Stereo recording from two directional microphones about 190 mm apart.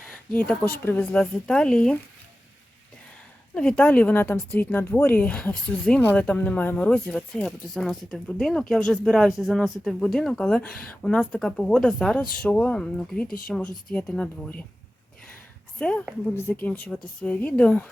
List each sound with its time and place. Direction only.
0.1 s a woman's voice: 10° left (ahead or behind)
3.5 s a woman's voice: 5° left (ahead or behind)
13.2 s speech: 45° left (ahead or behind)
13.9 s a woman's voice: 5° left (ahead or behind)
15.8 s a woman's voice: 5° left (ahead or behind)